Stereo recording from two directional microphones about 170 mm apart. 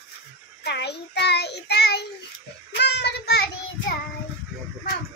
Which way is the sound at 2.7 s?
85° left.